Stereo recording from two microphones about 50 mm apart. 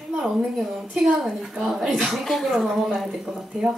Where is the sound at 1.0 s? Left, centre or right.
Centre.